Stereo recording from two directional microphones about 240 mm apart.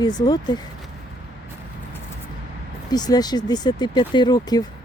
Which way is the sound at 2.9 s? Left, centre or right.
Centre.